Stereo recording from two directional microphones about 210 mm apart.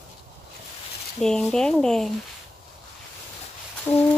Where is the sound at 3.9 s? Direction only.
10° left (ahead or behind).